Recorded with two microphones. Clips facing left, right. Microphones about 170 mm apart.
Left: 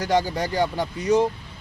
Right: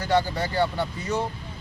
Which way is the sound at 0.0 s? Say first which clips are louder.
Left 1 dB; 15° left (ahead or behind).